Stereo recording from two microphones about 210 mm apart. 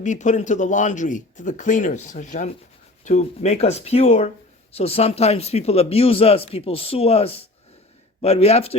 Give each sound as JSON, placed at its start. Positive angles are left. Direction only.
{"t": 0.0, "sound": "speech", "side_deg": 35}